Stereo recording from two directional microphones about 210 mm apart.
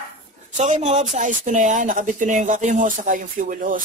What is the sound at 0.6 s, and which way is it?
Speech, 35° right (ahead or behind).